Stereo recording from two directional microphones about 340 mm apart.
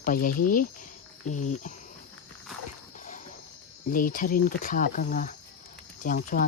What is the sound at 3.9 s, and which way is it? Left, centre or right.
Speech, left.